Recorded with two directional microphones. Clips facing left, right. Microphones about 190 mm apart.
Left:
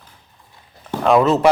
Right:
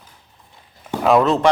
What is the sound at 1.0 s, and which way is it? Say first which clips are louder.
Speech: left 1 dB; centre (ahead or behind).